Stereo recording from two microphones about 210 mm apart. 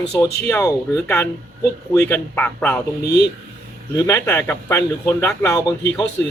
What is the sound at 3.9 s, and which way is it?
Speech, 15° left (ahead or behind).